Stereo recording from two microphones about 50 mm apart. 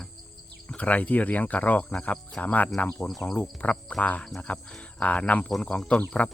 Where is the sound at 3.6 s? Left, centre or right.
Left.